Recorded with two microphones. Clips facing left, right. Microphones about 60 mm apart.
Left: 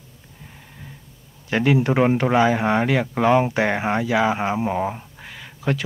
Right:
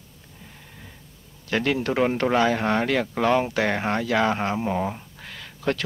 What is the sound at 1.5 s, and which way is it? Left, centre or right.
Speech, centre.